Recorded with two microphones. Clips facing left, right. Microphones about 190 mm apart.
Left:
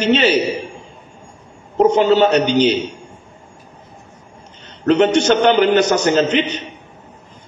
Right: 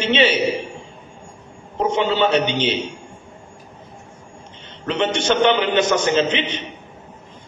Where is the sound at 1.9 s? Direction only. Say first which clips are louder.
Left 2 dB; 40° left (ahead or behind).